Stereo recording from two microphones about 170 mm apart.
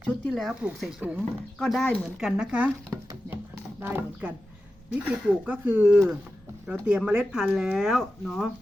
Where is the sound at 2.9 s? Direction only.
20° right (ahead or behind).